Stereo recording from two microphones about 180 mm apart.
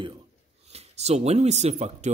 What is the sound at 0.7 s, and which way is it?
Speech, 35° right (ahead or behind).